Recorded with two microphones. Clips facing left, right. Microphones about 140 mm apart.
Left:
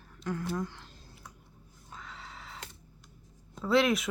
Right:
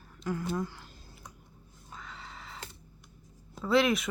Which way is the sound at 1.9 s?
Centre (ahead or behind).